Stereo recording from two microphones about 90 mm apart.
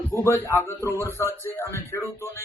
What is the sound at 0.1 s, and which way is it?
Speech, 30° left (ahead or behind).